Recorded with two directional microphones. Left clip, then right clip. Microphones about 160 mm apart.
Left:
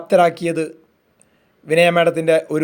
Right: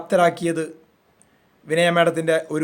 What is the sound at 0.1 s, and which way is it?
Speech, 25° left (ahead or behind).